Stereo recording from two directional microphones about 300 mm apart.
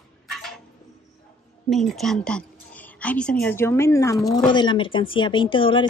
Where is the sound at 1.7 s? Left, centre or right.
Centre.